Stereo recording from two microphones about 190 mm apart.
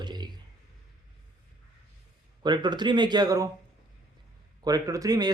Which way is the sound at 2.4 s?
25° right (ahead or behind).